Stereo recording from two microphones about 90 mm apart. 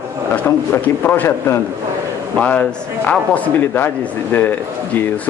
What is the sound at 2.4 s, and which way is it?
Speech, 15° left (ahead or behind).